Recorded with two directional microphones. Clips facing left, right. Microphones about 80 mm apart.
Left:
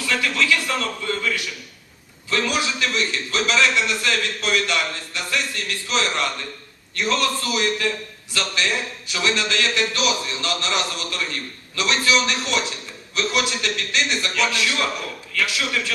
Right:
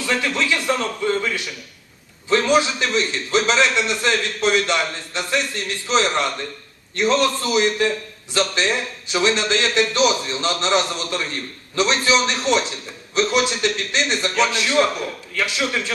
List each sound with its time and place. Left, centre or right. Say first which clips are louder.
0.0 s a man's voice: right 1 dB; right